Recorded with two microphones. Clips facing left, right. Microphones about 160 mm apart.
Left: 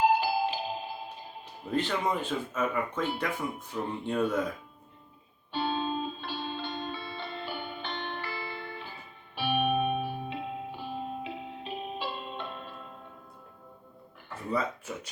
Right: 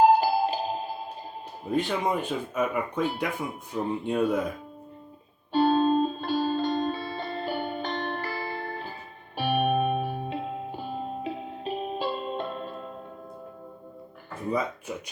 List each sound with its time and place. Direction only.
0.0 s music: 40° right (ahead or behind)
1.7 s speech: 15° right (ahead or behind)
5.5 s music: 40° right (ahead or behind)
14.5 s a sound: 15° right (ahead or behind)